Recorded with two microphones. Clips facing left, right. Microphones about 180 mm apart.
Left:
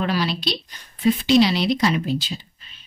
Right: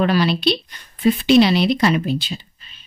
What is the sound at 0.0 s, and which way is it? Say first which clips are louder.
Speech: right 6 dB; 65° right (ahead or behind).